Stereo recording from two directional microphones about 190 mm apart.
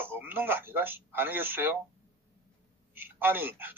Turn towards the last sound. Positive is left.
turn(degrees=-10)  # may be behind; listen again after turning